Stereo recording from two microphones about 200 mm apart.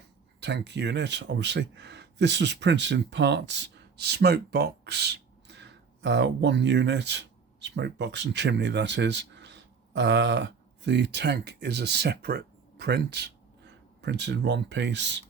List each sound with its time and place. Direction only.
0.3 s speech: 60° right (ahead or behind)